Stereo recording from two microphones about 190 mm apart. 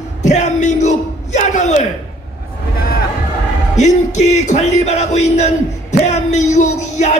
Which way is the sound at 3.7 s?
40° left (ahead or behind).